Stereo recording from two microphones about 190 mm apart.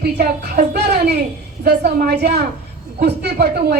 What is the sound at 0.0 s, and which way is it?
A woman's voice, 55° right (ahead or behind).